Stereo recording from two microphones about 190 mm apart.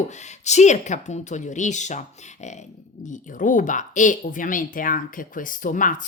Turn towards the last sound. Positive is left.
turn(degrees=45)  # may be behind; listen again after turning